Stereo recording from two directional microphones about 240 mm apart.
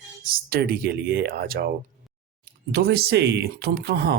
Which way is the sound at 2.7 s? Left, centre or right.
Right.